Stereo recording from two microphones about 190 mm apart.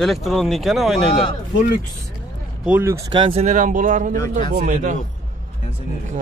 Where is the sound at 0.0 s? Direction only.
Centre (ahead or behind).